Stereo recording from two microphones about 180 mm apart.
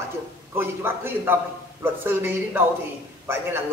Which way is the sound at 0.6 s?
10° right (ahead or behind).